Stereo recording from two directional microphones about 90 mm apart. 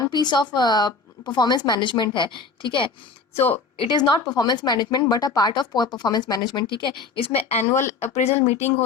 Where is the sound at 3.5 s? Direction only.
90° left.